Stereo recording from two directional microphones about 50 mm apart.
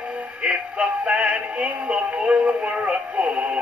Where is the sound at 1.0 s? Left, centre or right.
Centre.